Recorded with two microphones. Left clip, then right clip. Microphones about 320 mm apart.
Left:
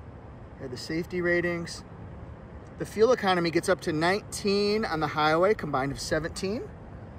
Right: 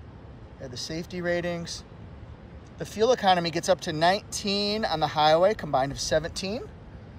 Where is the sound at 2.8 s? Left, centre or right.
Centre.